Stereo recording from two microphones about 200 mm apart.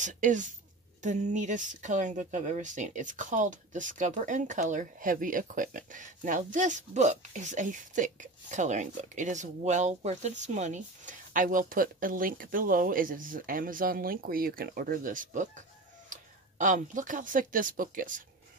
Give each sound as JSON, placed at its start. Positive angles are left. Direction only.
{"t": 0.0, "sound": "speech", "side_deg": -40}